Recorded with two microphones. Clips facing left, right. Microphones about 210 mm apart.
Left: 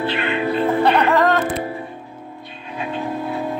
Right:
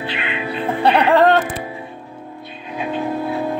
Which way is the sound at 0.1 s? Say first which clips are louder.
Left 5 dB; 45° left (ahead or behind).